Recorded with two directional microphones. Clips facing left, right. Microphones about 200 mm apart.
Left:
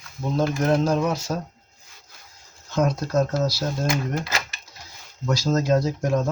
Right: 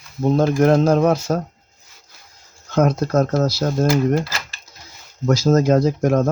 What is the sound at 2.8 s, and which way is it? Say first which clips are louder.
Speech: right 5 dB; 65° right (ahead or behind).